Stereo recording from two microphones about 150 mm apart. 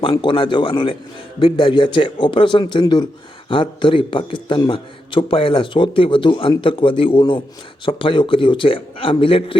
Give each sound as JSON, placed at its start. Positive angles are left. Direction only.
{"t": 0.0, "sound": "a man's voice", "side_deg": 30}